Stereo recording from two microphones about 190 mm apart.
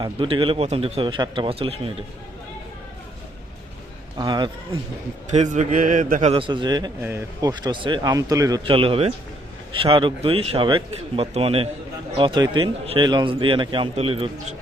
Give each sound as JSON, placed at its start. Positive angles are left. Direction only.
{"t": 0.0, "sound": "a man's voice", "side_deg": -25}
{"t": 4.2, "sound": "a man's voice", "side_deg": -20}
{"t": 5.3, "sound": "a man's voice", "side_deg": -40}
{"t": 6.3, "sound": "a man's voice", "side_deg": -25}